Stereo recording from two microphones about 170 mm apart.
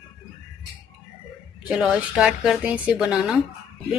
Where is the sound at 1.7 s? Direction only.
5° right (ahead or behind).